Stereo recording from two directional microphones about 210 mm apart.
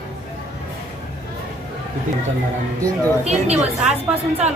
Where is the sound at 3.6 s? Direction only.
30° right (ahead or behind).